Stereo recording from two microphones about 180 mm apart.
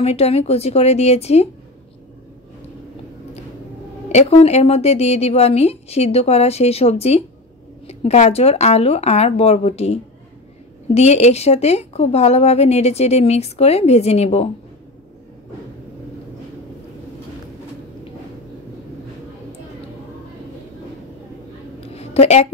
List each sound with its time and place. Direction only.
0.0 s a woman's voice: 35° left (ahead or behind)
4.1 s a woman's voice: 35° left (ahead or behind)
11.0 s a woman's voice: 35° left (ahead or behind)
21.9 s a sound: 35° left (ahead or behind)